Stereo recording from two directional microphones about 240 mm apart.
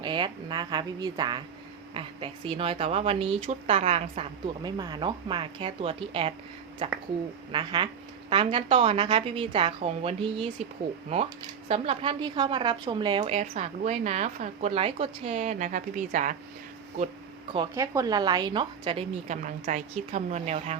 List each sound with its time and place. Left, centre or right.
0.0 s a woman's voice: centre
17.5 s a woman's voice: centre